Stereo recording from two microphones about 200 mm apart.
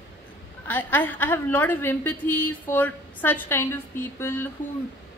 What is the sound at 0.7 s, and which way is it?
A woman's voice, 10° left (ahead or behind).